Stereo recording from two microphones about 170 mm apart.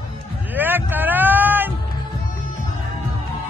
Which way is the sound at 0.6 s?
10° right (ahead or behind).